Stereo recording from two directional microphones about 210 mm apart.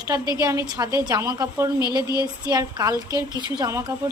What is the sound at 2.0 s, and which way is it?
Speech, 20° left (ahead or behind).